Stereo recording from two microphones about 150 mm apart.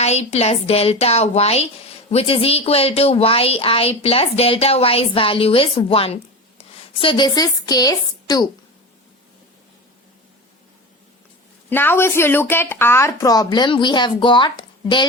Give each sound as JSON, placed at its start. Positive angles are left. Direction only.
{"t": 0.0, "sound": "a woman's voice", "side_deg": 45}
{"t": 11.7, "sound": "speech", "side_deg": 15}